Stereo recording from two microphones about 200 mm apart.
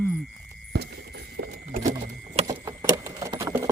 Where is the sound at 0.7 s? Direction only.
55° right (ahead or behind).